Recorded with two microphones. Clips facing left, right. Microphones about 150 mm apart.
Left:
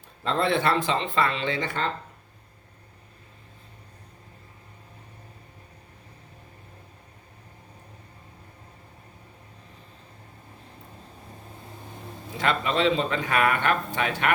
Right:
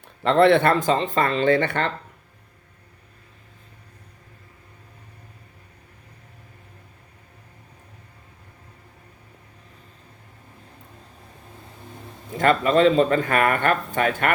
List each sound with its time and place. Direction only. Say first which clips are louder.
0.2 s speech: right 9 dB; 70° right (ahead or behind)
12.4 s speech: right 7 dB; 45° right (ahead or behind)